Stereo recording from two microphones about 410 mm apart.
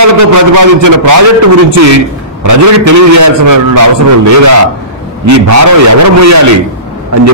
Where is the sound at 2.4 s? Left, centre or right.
Right.